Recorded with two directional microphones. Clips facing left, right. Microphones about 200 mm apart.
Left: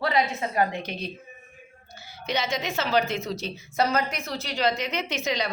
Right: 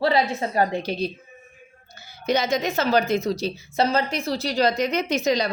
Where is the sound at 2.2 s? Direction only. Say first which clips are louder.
Right 6 dB; 40° right (ahead or behind).